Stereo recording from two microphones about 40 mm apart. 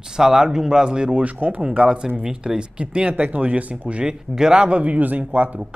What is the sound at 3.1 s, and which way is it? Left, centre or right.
Speech, right.